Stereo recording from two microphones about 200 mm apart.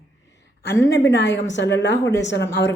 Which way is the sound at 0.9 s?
60° left (ahead or behind).